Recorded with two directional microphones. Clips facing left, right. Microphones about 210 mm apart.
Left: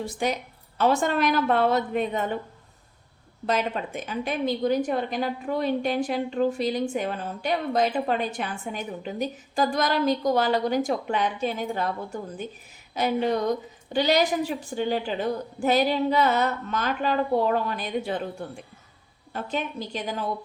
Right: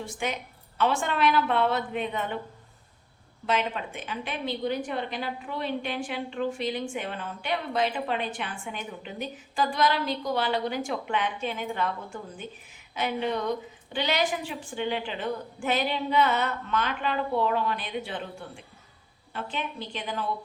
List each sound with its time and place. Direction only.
0.0 s a woman's voice: 35° left (ahead or behind)
3.4 s a woman's voice: 40° left (ahead or behind)